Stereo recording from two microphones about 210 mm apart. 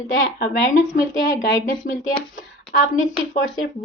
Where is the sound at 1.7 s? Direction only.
40° left (ahead or behind).